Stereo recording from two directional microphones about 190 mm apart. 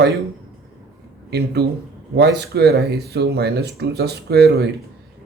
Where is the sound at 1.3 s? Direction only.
60° right (ahead or behind).